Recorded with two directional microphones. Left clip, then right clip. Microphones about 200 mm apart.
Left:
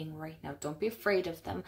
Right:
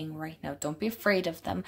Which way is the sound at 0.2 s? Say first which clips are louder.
Right 5 dB; 40° right (ahead or behind).